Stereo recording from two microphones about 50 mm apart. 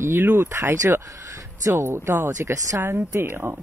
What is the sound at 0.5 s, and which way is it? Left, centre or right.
Speech, right.